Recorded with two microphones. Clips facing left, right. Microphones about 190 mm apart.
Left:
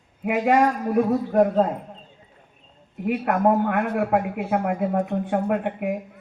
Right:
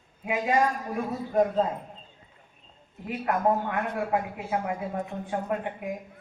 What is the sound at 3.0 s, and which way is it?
A man's voice, 65° left (ahead or behind).